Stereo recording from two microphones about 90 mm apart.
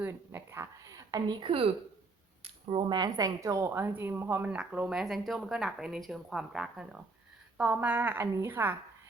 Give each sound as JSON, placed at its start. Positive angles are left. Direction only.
{"t": 0.0, "sound": "a sound", "side_deg": -25}
{"t": 1.4, "sound": "speech", "side_deg": -80}
{"t": 2.4, "sound": "a sound", "side_deg": -90}
{"t": 2.9, "sound": "a woman's voice", "side_deg": -50}
{"t": 3.7, "sound": "speech", "side_deg": -25}
{"t": 4.5, "sound": "speech", "side_deg": -10}
{"t": 7.6, "sound": "speech", "side_deg": -15}